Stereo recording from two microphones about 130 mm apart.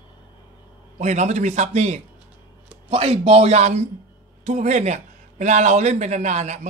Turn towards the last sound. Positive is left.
turn(degrees=-60)  # may be behind; listen again after turning